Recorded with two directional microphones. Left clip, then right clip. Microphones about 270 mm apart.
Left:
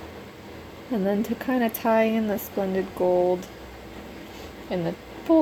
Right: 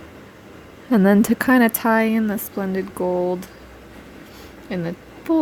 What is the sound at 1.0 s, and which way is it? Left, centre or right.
Speech, right.